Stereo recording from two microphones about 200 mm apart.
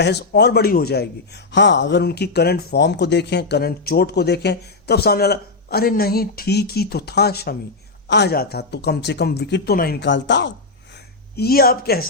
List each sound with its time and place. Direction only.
0.0 s speech: 55° left (ahead or behind)
11.3 s speech: 50° left (ahead or behind)